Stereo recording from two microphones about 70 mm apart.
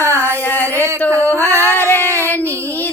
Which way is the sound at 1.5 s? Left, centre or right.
Right.